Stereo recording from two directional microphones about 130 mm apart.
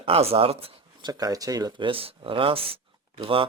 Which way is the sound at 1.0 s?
30° right (ahead or behind).